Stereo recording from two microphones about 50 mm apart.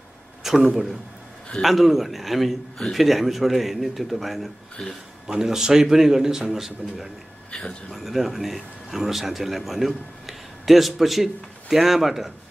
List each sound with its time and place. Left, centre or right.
0.4 s a man's voice: centre
7.5 s speech: centre
7.9 s speech: centre